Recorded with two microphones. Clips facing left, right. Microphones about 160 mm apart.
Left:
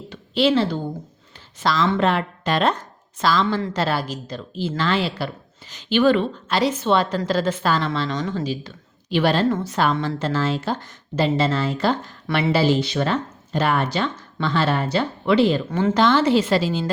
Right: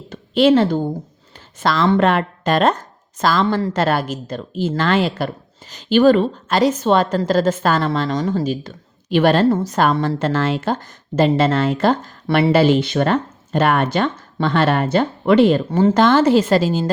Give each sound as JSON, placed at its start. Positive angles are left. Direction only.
{"t": 0.1, "sound": "a woman's voice", "side_deg": -50}
{"t": 10.2, "sound": "speech", "side_deg": -60}